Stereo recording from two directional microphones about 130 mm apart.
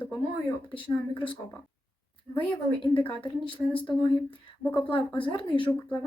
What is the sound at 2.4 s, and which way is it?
A woman's voice, 40° left (ahead or behind).